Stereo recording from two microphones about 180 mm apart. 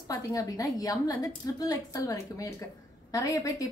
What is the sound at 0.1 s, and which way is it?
A woman's voice, 20° left (ahead or behind).